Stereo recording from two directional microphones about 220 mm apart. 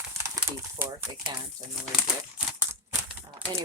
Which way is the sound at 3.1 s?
5° right (ahead or behind).